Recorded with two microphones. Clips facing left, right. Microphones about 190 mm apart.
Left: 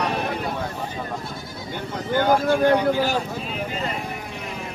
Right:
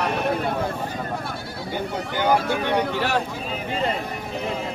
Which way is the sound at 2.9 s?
70° right (ahead or behind).